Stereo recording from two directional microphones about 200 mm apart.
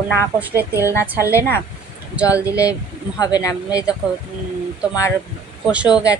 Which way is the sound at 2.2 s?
15° left (ahead or behind).